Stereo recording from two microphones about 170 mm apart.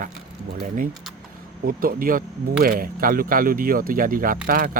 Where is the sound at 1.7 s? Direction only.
60° right (ahead or behind).